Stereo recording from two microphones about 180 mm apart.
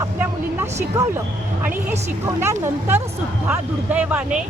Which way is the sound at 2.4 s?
15° right (ahead or behind).